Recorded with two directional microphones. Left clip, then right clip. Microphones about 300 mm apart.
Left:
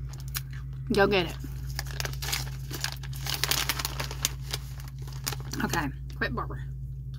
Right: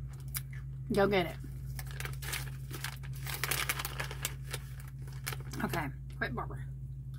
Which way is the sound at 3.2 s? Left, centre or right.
Centre.